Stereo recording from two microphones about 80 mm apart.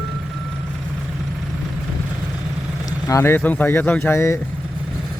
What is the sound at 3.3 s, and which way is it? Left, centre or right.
A man's voice, left.